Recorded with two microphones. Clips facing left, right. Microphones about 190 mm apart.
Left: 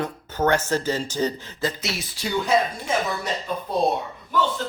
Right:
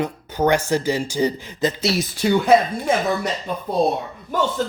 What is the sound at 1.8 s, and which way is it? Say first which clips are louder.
Speech: right 9 dB; 35° right (ahead or behind).